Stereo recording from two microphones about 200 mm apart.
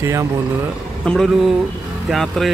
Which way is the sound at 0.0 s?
15° right (ahead or behind).